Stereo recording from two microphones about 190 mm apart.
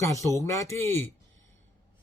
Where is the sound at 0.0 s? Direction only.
15° left (ahead or behind).